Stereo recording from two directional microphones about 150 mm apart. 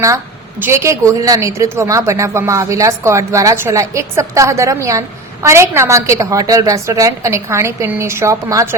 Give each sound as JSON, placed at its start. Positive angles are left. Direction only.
{"t": 0.6, "sound": "speech", "side_deg": -20}